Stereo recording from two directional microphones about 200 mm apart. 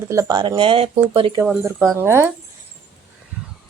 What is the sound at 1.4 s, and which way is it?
Speech, 10° right (ahead or behind).